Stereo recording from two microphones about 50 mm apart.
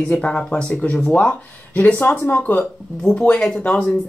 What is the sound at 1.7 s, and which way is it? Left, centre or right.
Speech, left.